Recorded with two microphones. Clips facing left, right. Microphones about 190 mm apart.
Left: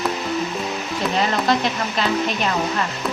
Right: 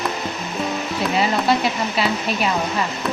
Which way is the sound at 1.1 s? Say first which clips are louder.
Right 1 dB; 5° right (ahead or behind).